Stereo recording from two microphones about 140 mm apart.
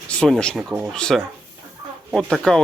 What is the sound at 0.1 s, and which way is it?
Speech, 5° left (ahead or behind).